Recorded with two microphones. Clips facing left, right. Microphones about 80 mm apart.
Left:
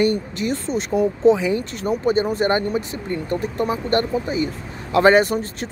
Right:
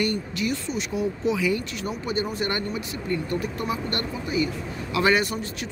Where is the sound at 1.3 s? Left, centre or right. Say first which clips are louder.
Left 3 dB; left.